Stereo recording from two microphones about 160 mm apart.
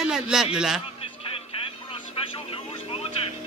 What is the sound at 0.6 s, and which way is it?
Speech, 5° right (ahead or behind).